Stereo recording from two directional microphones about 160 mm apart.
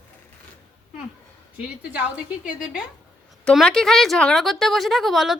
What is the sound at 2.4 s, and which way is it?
A woman's voice, 5° right (ahead or behind).